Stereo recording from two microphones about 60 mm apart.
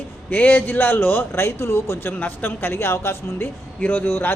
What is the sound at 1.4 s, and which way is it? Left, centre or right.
Speech, left.